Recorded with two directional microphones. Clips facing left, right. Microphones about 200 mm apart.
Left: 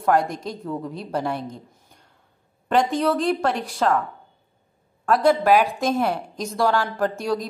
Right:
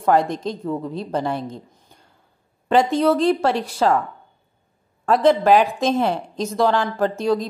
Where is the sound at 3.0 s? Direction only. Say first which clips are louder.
Right 4 dB; centre (ahead or behind).